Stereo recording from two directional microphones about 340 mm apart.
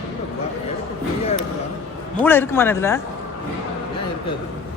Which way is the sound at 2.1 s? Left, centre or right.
Centre.